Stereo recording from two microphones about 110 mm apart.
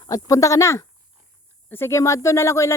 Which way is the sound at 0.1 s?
30° left (ahead or behind).